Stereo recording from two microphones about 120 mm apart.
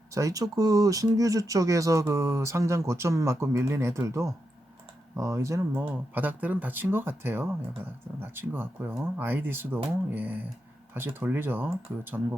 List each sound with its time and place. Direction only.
0.1 s speech: 25° right (ahead or behind)
6.1 s speech: 15° right (ahead or behind)